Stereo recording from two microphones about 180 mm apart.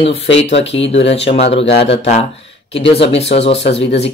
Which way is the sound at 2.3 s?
85° left.